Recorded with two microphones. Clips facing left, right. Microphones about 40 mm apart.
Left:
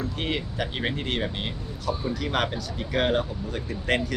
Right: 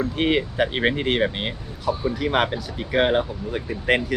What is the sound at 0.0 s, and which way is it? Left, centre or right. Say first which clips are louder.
Speech: right 8 dB; right.